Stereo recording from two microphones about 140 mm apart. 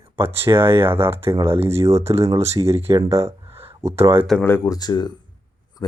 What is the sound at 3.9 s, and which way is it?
Speech, 45° right (ahead or behind).